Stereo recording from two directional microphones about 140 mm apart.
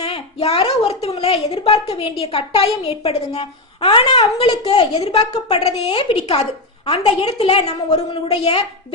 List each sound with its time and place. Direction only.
0.0 s a woman's voice: 45° left (ahead or behind)
4.4 s a child's voice: 35° left (ahead or behind)
5.5 s a woman's voice: 45° left (ahead or behind)